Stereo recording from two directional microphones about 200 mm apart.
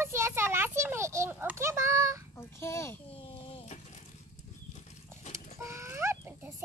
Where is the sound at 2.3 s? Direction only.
15° left (ahead or behind).